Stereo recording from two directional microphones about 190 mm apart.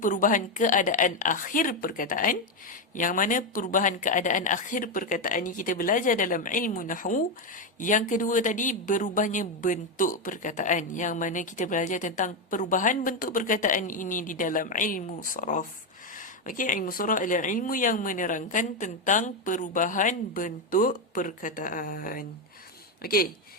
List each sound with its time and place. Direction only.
0.0 s a woman's voice: 45° left (ahead or behind)